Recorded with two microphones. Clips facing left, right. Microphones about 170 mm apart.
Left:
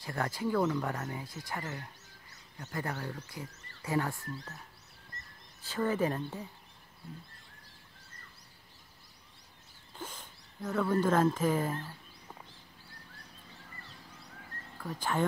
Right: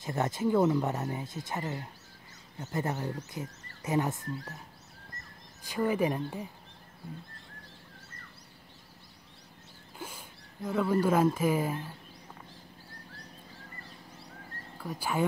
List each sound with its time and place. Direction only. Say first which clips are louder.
0.0 s speech: right 4 dB; 20° right (ahead or behind)
5.6 s speech: right 2 dB; 15° right (ahead or behind)
9.9 s speech: right 1 dB; 10° right (ahead or behind)
14.8 s speech: right 1 dB; 10° right (ahead or behind)